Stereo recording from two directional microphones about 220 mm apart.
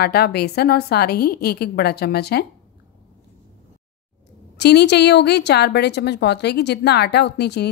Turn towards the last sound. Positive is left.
turn(degrees=50)  # may be behind; listen again after turning